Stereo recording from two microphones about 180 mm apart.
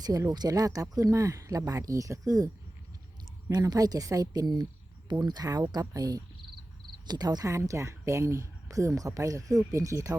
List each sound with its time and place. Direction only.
0.0 s speech: 20° right (ahead or behind)
3.5 s speech: 20° right (ahead or behind)